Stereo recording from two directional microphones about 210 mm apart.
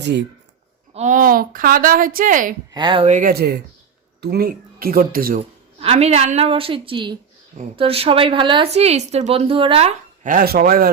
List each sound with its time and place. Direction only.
0.0 s speech: 55° right (ahead or behind)
0.9 s speech: 35° right (ahead or behind)
2.7 s speech: 25° right (ahead or behind); by 5.4 s 45° right (ahead or behind)
5.4 s a woman's voice: 30° right (ahead or behind)
10.2 s speech: 45° right (ahead or behind)